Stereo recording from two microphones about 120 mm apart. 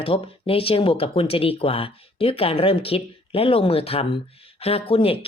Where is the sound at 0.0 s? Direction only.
50° left (ahead or behind).